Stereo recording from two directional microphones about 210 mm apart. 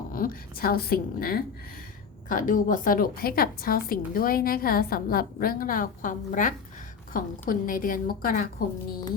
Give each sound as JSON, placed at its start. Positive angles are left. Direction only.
{"t": 0.1, "sound": "a woman's voice", "side_deg": 45}